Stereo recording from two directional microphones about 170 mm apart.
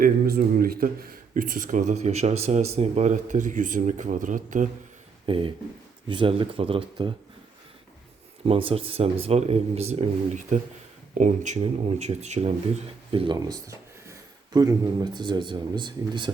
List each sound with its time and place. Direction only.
0.0 s speech: 60° right (ahead or behind)
5.2 s speech: 30° right (ahead or behind)
8.4 s speech: 35° right (ahead or behind)